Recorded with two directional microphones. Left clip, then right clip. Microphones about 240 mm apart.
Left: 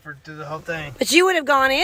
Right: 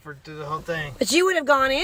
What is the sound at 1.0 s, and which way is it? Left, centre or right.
Speech, centre.